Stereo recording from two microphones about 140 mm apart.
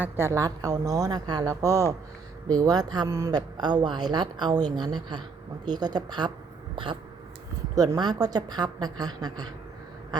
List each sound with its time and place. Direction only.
0.0 s speech: 20° right (ahead or behind)
7.8 s speech: 30° right (ahead or behind)